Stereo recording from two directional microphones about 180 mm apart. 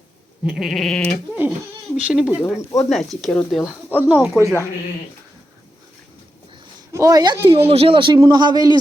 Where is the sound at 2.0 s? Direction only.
5° right (ahead or behind).